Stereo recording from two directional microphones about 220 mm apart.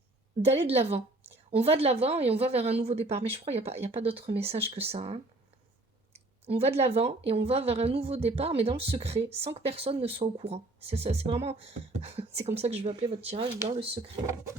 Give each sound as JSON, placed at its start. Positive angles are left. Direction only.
{"t": 0.4, "sound": "a woman's voice", "side_deg": -25}